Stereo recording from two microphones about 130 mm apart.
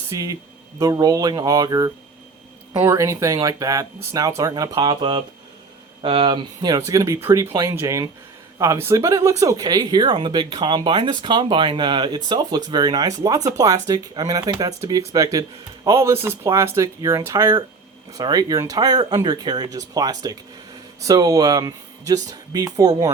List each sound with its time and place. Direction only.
0.1 s speech: 25° right (ahead or behind)